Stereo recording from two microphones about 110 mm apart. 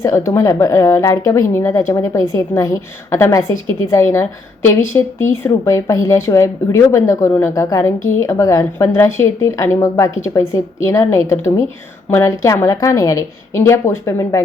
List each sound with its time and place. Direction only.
0.0 s a woman's voice: 25° left (ahead or behind)